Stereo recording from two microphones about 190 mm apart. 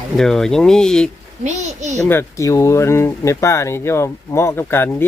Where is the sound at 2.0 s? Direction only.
15° left (ahead or behind).